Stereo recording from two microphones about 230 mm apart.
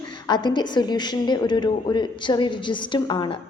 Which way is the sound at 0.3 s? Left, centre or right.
Centre.